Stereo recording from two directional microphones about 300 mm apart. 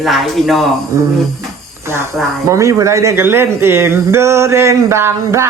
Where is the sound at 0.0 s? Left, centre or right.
Centre.